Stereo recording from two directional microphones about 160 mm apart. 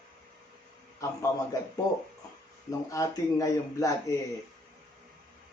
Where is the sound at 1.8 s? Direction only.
20° left (ahead or behind).